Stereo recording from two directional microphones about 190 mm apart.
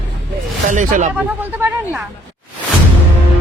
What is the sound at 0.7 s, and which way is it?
Speech, 40° right (ahead or behind).